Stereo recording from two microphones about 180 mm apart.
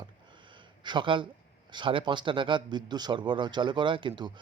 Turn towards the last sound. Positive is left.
turn(degrees=-25)  # may be behind; listen again after turning